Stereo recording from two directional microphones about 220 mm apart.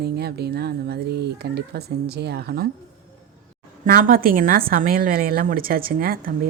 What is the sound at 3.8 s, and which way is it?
A woman's voice, 40° right (ahead or behind).